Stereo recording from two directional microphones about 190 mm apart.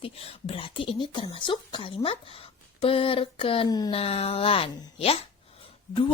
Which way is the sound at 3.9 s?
30° left (ahead or behind).